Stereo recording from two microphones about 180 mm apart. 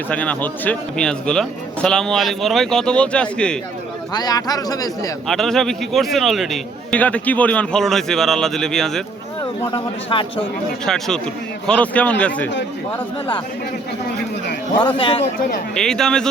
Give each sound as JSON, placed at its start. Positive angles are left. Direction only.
{"t": 0.1, "sound": "a man's voice", "side_deg": 5}
{"t": 4.1, "sound": "speech", "side_deg": 20}
{"t": 5.3, "sound": "a man's voice", "side_deg": 0}
{"t": 9.7, "sound": "speech", "side_deg": 30}
{"t": 10.8, "sound": "a man's voice", "side_deg": 0}
{"t": 14.8, "sound": "speech", "side_deg": 25}
{"t": 15.7, "sound": "a man's voice", "side_deg": 5}